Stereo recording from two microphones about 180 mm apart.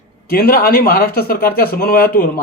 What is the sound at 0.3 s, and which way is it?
Speech, 55° left (ahead or behind).